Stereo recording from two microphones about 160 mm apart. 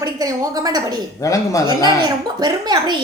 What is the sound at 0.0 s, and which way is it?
Speech, 25° right (ahead or behind).